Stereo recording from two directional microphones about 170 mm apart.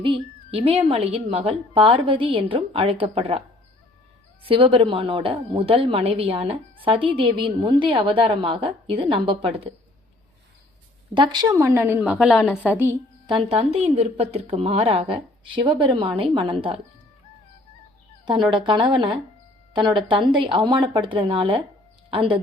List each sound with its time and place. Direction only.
0.0 s a woman's voice: 30° right (ahead or behind)
4.4 s a woman's voice: 30° right (ahead or behind)
11.1 s a woman's voice: 25° right (ahead or behind)
13.2 s a woman's voice: 30° right (ahead or behind)
18.5 s speech: 30° right (ahead or behind)